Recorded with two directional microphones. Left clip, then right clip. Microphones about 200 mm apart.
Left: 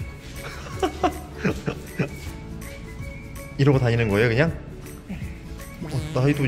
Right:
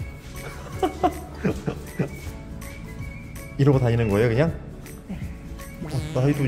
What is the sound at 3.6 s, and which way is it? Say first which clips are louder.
Speech: even; 15° right (ahead or behind).